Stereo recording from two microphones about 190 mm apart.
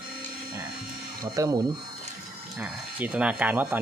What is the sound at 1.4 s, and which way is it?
Speech, 20° right (ahead or behind).